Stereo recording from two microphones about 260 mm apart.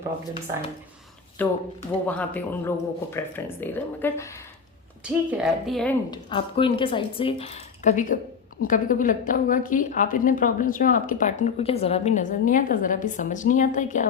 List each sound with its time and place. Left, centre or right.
1.4 s speech: centre
5.0 s speech: centre
6.1 s a woman's voice: centre